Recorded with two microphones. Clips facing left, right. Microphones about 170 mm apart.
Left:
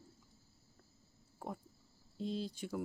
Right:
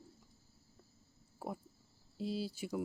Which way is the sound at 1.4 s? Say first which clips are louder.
Right 2 dB; 5° right (ahead or behind).